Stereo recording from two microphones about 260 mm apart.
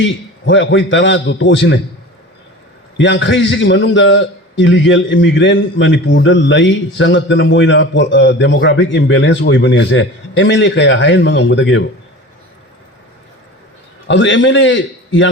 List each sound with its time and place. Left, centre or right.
0.0 s a man's voice: left
3.0 s a man's voice: left
14.1 s a man's voice: left